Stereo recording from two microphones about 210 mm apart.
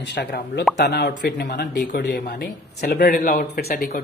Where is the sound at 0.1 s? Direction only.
55° left (ahead or behind).